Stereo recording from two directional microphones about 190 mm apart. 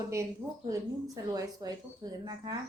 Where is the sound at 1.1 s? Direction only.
20° right (ahead or behind).